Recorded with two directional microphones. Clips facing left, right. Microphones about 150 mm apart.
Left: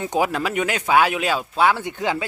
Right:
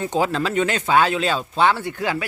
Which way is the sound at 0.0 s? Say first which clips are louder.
Even; 15° left (ahead or behind).